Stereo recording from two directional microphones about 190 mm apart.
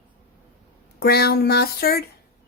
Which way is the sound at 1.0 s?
55° left (ahead or behind).